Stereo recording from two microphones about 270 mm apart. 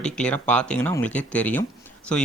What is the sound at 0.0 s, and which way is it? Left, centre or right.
Speech, centre.